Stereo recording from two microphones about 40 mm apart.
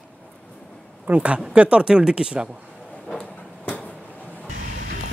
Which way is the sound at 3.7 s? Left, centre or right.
Left.